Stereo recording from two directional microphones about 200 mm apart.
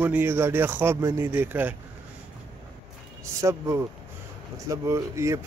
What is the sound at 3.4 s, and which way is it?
Speech, 15° right (ahead or behind).